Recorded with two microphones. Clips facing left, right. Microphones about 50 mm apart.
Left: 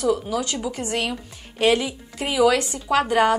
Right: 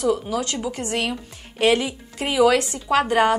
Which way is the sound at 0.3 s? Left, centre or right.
Right.